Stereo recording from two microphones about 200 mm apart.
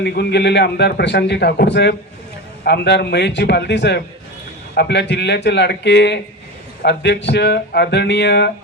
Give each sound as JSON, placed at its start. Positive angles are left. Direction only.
{"t": 0.0, "sound": "a man's voice", "side_deg": 55}